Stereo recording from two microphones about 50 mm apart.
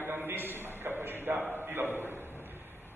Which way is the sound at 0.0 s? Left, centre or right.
Right.